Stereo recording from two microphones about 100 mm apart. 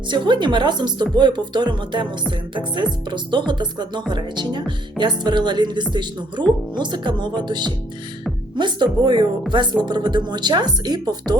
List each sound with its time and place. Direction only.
0.1 s a woman's voice: 50° right (ahead or behind)